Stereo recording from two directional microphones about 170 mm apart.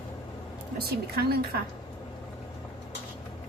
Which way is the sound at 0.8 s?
65° right (ahead or behind).